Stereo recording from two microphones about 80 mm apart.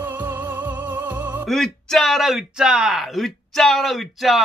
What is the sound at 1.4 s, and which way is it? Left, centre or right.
A man's voice, centre.